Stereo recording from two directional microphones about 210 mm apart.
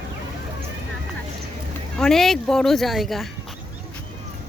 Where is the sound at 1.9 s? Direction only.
Centre (ahead or behind).